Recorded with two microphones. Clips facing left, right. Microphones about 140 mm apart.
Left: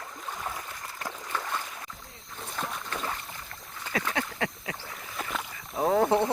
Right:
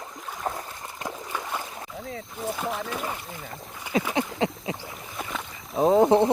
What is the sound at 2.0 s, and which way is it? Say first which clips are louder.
Boat: right 15 dB; 90° right.